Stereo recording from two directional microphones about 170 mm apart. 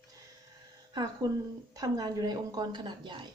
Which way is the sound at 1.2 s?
20° right (ahead or behind).